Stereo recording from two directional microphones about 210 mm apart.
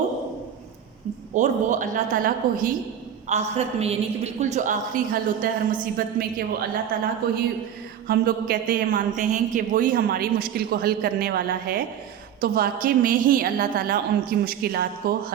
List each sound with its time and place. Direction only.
1.4 s a woman's voice: 35° right (ahead or behind)